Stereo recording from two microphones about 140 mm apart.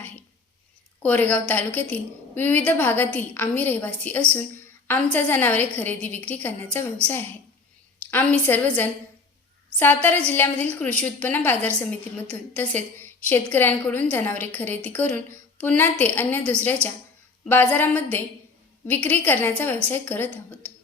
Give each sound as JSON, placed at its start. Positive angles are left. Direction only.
{"t": 1.0, "sound": "a woman's voice", "side_deg": 10}